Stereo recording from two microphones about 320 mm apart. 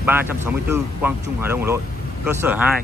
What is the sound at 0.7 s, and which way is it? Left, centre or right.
Speech, centre.